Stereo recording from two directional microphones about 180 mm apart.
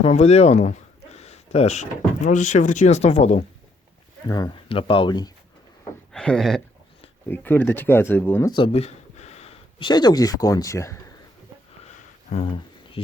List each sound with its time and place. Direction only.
0.0 s speech: 35° left (ahead or behind)
4.3 s speech: 20° left (ahead or behind)
6.1 s speech: 5° left (ahead or behind)
8.5 s speech: 30° left (ahead or behind)
11.8 s a sound: 35° left (ahead or behind)